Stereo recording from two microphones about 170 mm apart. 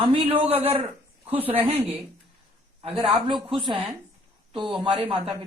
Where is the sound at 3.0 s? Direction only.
30° right (ahead or behind).